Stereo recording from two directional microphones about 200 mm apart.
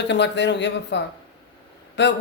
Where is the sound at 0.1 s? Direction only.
60° left (ahead or behind).